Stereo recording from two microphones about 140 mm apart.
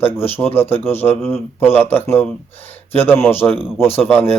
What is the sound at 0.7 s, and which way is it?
A man's voice, 15° left (ahead or behind).